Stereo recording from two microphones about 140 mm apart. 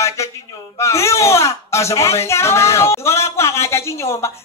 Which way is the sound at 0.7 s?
20° left (ahead or behind).